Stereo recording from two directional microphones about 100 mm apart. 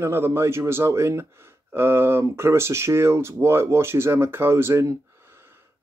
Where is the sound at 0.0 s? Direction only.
25° right (ahead or behind).